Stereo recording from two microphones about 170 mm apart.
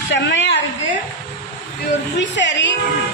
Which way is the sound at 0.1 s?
90° left.